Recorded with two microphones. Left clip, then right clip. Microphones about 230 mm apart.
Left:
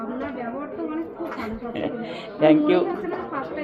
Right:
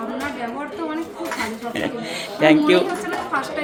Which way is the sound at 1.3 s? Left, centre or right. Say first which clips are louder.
Right 5 dB; right.